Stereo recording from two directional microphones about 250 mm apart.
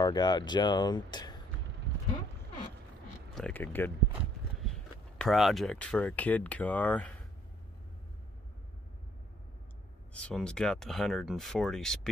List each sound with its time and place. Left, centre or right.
0.0 s speech: centre
3.3 s speech: centre
4.6 s walk: centre
5.2 s speech: centre
10.1 s speech: centre